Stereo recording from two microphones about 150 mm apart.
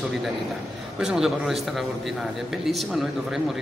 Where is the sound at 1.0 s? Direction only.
5° right (ahead or behind).